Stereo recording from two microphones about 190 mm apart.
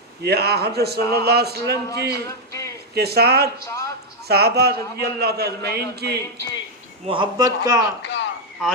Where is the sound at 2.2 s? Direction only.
15° left (ahead or behind).